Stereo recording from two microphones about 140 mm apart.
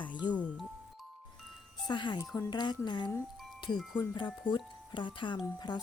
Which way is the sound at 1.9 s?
30° left (ahead or behind).